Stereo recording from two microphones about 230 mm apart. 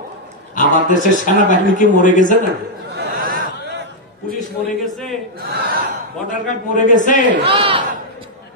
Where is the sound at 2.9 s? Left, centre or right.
Right.